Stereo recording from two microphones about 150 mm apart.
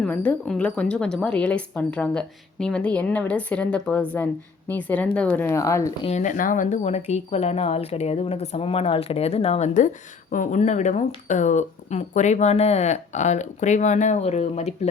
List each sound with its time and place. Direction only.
0.0 s a woman's voice: 10° left (ahead or behind)
6.0 s speech: 45° left (ahead or behind)